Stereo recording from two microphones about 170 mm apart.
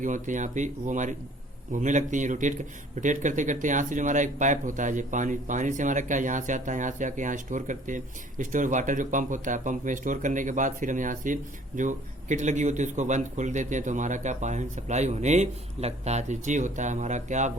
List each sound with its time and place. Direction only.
0.0 s speech: 45° right (ahead or behind)